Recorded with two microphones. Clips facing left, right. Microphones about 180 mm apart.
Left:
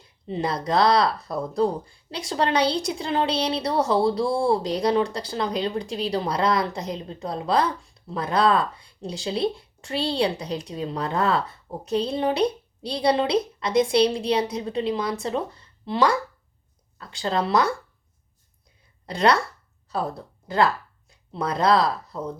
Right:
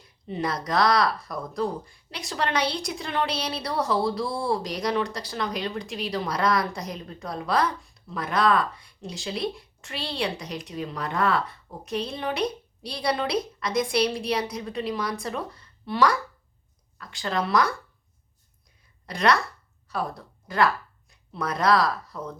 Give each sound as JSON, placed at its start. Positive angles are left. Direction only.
{"t": 0.0, "sound": "speech", "side_deg": 30}
{"t": 19.0, "sound": "speech", "side_deg": 30}